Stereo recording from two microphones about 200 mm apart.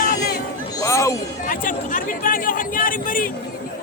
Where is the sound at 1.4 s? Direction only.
45° left (ahead or behind).